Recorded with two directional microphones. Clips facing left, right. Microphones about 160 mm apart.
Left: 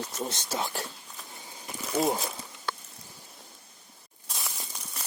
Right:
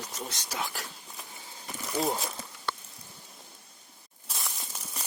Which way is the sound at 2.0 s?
5° left (ahead or behind).